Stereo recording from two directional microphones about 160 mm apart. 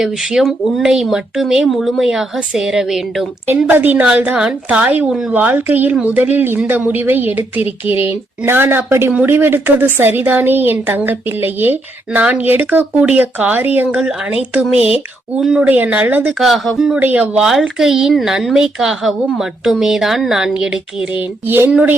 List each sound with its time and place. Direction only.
0.0 s speech: 5° right (ahead or behind)
3.4 s a woman's voice: 15° right (ahead or behind)
14.8 s speech: 40° left (ahead or behind)
15.4 s a woman's voice: 5° right (ahead or behind)